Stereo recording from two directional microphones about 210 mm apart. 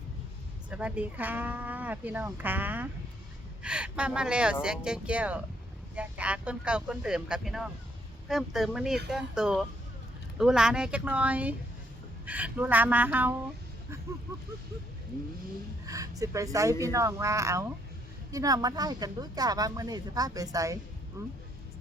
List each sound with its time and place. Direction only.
0.7 s speech: 5° right (ahead or behind)
15.9 s speech: 15° right (ahead or behind)